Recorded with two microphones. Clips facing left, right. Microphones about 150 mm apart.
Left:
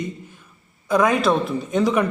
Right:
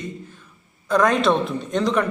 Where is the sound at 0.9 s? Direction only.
5° left (ahead or behind).